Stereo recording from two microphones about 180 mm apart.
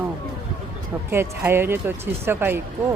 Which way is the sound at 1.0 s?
10° right (ahead or behind).